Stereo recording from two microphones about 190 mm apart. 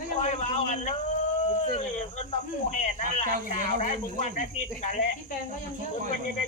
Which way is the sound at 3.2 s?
50° right (ahead or behind).